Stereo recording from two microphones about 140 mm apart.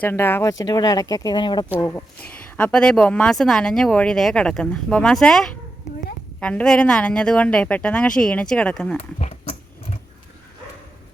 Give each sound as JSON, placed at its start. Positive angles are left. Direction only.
{"t": 0.0, "sound": "a woman's voice", "side_deg": 15}
{"t": 0.6, "sound": "speech", "side_deg": 30}
{"t": 1.7, "sound": "a woman's voice", "side_deg": 15}
{"t": 9.0, "sound": "speech", "side_deg": 55}